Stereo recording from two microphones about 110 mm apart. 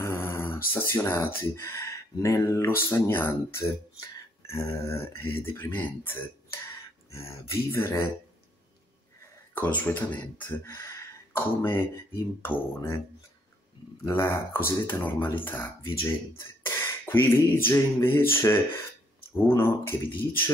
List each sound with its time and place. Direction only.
0.0 s speech: 25° left (ahead or behind)
9.5 s speech: 15° left (ahead or behind)
14.0 s speech: 20° left (ahead or behind)
16.6 s a sound: 20° left (ahead or behind)
19.3 s speech: 20° left (ahead or behind)